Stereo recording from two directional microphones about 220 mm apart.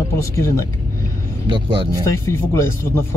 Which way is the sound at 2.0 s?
10° left (ahead or behind).